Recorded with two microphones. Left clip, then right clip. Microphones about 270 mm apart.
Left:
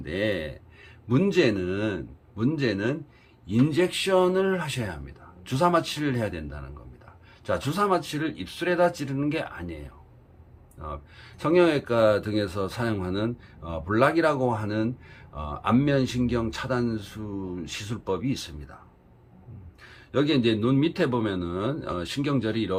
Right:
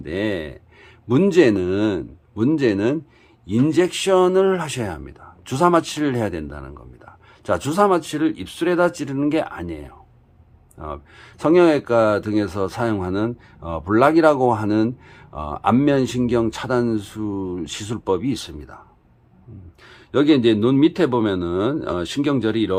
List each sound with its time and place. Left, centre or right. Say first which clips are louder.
0.0 s speech: right 3 dB; centre
19.8 s a man's voice: right 7 dB; centre